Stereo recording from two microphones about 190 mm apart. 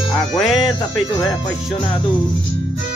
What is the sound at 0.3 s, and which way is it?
Music, centre (ahead or behind).